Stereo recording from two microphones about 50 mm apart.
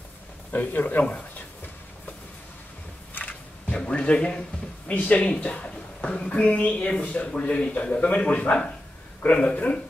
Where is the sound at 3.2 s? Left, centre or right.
Left.